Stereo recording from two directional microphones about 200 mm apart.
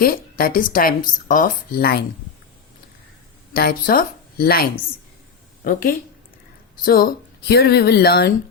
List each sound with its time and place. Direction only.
0.0 s speech: 45° left (ahead or behind)
3.5 s a woman's voice: 50° left (ahead or behind)